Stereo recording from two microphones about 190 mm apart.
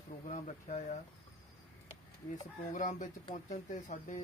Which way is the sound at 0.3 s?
40° left (ahead or behind).